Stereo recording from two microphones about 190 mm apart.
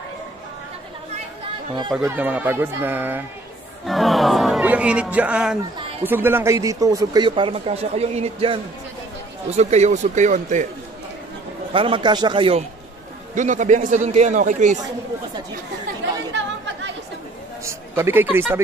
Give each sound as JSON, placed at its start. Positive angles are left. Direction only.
{"t": 2.0, "sound": "speech", "side_deg": -10}
{"t": 3.8, "sound": "a man's voice", "side_deg": 0}
{"t": 11.7, "sound": "speech", "side_deg": -25}
{"t": 13.3, "sound": "a man's voice", "side_deg": -40}
{"t": 16.3, "sound": "chatter", "side_deg": -70}
{"t": 17.6, "sound": "speech", "side_deg": -10}